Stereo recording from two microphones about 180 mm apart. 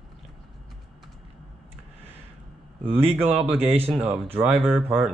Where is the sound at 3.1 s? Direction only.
10° right (ahead or behind).